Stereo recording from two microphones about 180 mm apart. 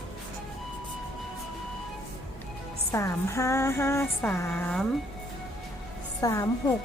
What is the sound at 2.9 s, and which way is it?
Music, 15° left (ahead or behind).